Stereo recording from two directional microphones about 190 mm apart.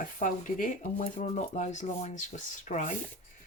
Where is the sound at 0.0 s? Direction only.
45° left (ahead or behind).